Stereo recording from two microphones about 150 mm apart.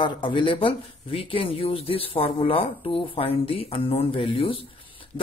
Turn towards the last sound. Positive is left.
turn(degrees=35)  # may be behind; listen again after turning